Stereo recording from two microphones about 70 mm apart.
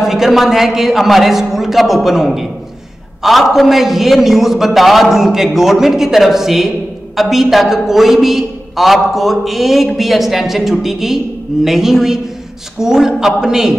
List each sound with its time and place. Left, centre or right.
0.0 s a man's voice: centre